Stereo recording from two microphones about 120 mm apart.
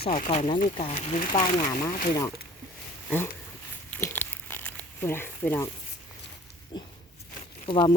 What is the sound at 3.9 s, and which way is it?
Crumpling, 15° left (ahead or behind).